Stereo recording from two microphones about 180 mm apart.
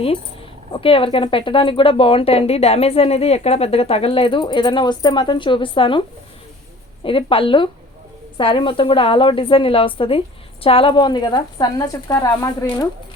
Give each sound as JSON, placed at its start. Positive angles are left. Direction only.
{"t": 0.7, "sound": "speech", "side_deg": 30}
{"t": 7.0, "sound": "a woman's voice", "side_deg": 30}